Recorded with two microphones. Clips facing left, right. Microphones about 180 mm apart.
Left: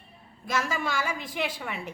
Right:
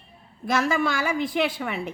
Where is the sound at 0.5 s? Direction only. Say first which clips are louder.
Right 5 dB; 60° right (ahead or behind).